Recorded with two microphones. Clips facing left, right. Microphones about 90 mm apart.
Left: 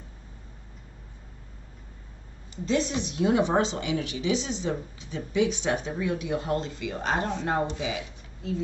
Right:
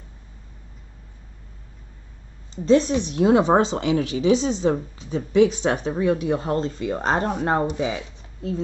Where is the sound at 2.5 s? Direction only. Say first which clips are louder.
Right 9 dB; 35° right (ahead or behind).